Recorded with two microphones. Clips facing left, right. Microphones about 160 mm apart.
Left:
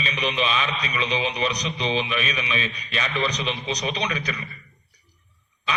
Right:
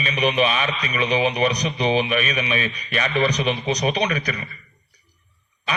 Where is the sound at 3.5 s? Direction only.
45° right (ahead or behind).